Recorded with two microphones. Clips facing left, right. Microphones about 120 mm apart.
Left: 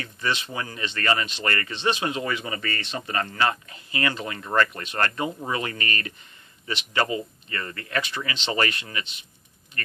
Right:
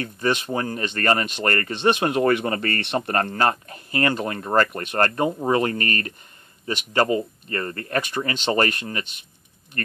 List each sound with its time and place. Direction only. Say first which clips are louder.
0.0 s speech: right 5 dB; 50° right (ahead or behind)